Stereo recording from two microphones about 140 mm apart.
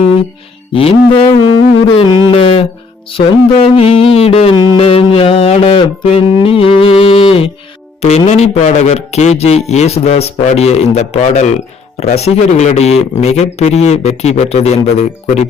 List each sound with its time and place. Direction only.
0.7 s music: 40° left (ahead or behind)
8.0 s speech: 50° left (ahead or behind)